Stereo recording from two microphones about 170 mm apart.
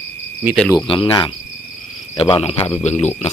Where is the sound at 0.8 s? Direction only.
30° left (ahead or behind).